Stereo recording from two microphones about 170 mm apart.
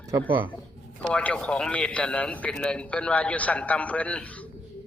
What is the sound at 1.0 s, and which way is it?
A man's voice, 5° left (ahead or behind).